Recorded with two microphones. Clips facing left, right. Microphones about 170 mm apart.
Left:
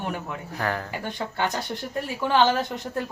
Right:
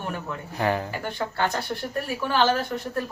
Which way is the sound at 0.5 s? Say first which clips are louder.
Right 4 dB; 15° right (ahead or behind).